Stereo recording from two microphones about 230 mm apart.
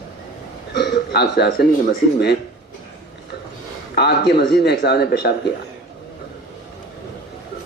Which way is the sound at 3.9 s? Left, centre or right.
Left.